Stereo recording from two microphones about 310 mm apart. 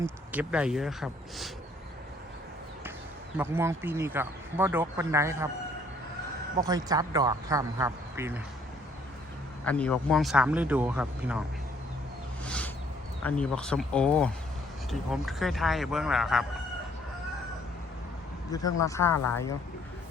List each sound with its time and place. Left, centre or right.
0.0 s speech: centre
3.3 s speech: centre
6.6 s speech: centre
9.6 s speech: centre
12.5 s a sound: centre
13.2 s speech: centre
18.5 s speech: centre
19.1 s speech: left